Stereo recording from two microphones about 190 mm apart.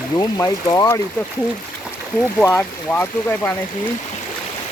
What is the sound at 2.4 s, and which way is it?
Speech, 10° left (ahead or behind).